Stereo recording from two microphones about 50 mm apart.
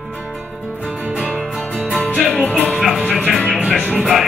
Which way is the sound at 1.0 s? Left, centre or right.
Right.